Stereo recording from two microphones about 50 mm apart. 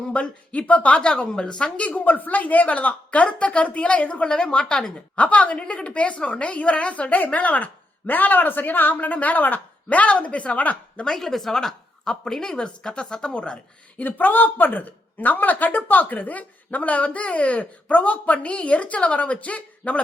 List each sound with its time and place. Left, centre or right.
0.1 s a woman's voice: left
1.9 s a woman's voice: left
11.0 s a woman's voice: centre
14.0 s speech: left